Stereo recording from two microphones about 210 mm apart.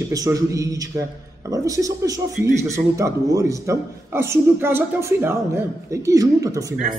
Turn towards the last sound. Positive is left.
turn(degrees=-15)  # may be behind; listen again after turning